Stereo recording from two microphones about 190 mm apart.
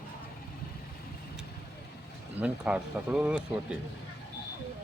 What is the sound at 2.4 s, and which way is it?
Speech, 5° right (ahead or behind).